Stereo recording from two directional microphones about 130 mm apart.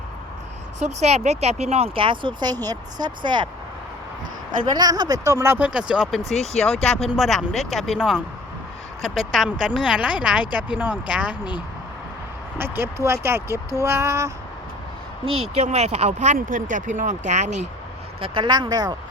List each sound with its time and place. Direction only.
0.8 s speech: 60° right (ahead or behind); by 3.5 s 35° right (ahead or behind)
4.8 s speech: 30° right (ahead or behind); by 11.3 s 10° right (ahead or behind)
12.5 s speech: 15° right (ahead or behind)
15.2 s speech: 55° right (ahead or behind)
18.2 s speech: 35° right (ahead or behind)